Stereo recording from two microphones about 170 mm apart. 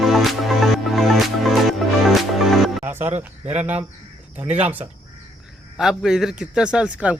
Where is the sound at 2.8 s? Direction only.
10° right (ahead or behind).